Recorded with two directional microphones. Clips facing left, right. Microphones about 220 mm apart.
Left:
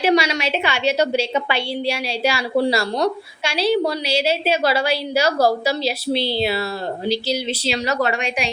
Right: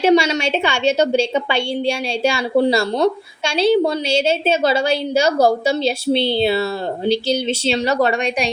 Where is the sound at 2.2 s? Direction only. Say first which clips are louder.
Right 3 dB; 25° right (ahead or behind).